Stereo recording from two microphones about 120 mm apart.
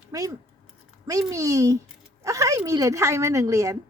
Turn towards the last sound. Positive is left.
turn(degrees=-25)  # may be behind; listen again after turning